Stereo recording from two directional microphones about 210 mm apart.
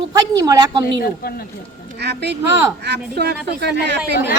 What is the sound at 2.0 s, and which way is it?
Speech, 55° right (ahead or behind).